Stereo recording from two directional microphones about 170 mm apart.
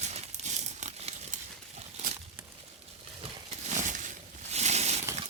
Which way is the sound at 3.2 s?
35° right (ahead or behind).